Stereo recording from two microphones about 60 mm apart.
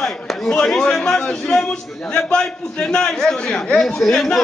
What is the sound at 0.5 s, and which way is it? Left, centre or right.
A man's voice, centre.